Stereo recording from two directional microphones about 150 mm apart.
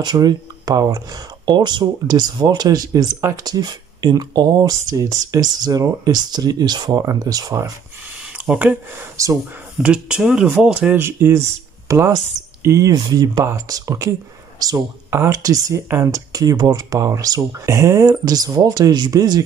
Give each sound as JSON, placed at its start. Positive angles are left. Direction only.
{"t": 0.0, "sound": "speech", "side_deg": -30}
{"t": 8.5, "sound": "speech", "side_deg": -10}
{"t": 9.1, "sound": "speech", "side_deg": -20}
{"t": 9.8, "sound": "speech", "side_deg": -5}